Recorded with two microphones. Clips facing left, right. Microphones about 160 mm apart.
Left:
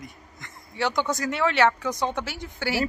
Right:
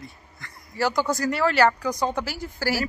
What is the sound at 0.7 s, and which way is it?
Speech, centre (ahead or behind).